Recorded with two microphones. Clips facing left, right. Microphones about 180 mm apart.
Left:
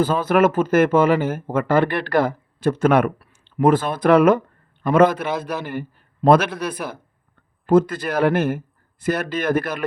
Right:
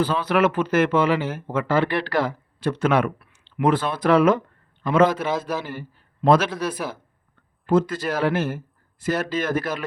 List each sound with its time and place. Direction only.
0.0 s speech: 45° left (ahead or behind)
7.7 s speech: 55° left (ahead or behind)